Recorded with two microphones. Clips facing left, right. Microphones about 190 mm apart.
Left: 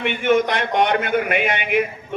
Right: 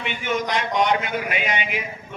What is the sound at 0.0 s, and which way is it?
Speech, 55° left (ahead or behind).